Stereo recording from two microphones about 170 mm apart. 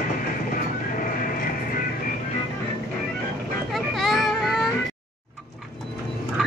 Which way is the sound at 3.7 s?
Centre (ahead or behind).